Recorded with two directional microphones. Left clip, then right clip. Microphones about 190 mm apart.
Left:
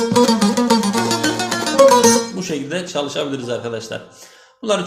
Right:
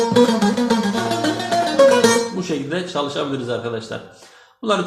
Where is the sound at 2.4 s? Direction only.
15° left (ahead or behind).